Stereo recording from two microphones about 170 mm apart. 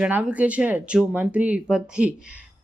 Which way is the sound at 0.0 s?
10° right (ahead or behind).